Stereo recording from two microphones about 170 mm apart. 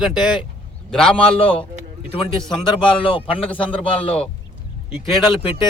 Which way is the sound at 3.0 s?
30° left (ahead or behind).